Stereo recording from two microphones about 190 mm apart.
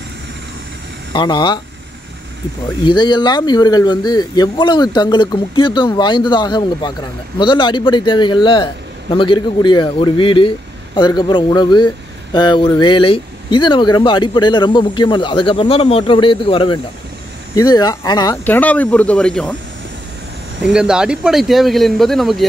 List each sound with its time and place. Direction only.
1.1 s speech: 25° left (ahead or behind)
2.8 s speech: 25° left (ahead or behind)
18.4 s speech: 10° left (ahead or behind)
20.6 s speech: 5° right (ahead or behind)